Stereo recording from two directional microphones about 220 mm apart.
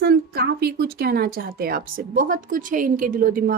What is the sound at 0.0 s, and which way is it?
Speech, 45° right (ahead or behind).